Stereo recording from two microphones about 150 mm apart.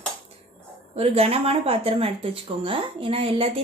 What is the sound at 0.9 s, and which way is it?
A woman's voice, 45° right (ahead or behind).